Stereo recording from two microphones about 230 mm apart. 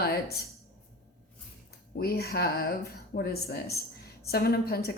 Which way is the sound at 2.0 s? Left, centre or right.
Left.